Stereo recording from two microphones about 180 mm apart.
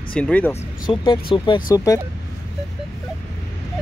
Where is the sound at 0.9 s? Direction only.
25° left (ahead or behind).